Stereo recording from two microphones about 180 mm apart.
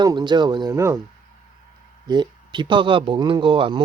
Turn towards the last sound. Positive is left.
turn(degrees=-30)  # may be behind; listen again after turning